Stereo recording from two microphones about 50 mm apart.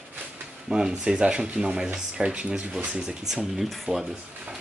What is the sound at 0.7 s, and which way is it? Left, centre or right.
Speech, centre.